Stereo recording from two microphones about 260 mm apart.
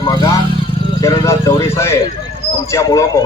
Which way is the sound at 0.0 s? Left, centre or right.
Centre.